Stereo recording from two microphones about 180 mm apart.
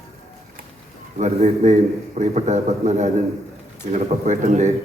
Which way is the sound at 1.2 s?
40° right (ahead or behind).